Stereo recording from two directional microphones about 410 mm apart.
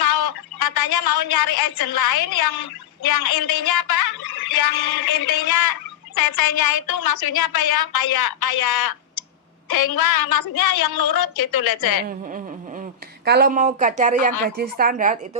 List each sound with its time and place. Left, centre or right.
0.0 s a woman's voice: left
12.0 s speech: centre